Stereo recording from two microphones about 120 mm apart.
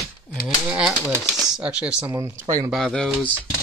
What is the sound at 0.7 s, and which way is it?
Speech, 10° right (ahead or behind).